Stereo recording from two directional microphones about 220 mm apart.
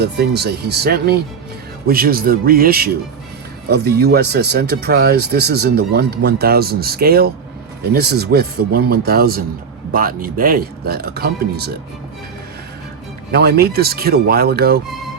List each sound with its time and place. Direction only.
0.0 s speech: 45° right (ahead or behind)
13.3 s speech: 45° right (ahead or behind)